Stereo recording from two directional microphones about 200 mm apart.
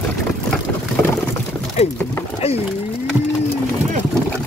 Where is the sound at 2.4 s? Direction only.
30° left (ahead or behind).